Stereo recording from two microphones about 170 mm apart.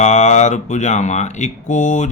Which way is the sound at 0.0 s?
45° left (ahead or behind).